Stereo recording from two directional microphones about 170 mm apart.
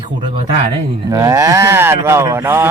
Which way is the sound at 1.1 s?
20° right (ahead or behind).